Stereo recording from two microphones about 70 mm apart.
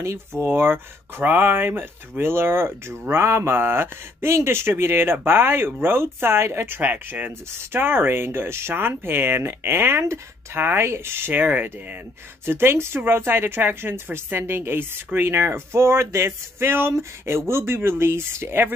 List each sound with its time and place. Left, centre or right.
0.0 s speech: right